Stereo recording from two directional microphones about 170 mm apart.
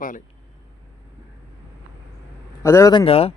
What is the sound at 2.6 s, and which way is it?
Speech, 15° left (ahead or behind).